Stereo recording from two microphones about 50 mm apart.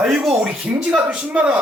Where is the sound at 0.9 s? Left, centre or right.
Right.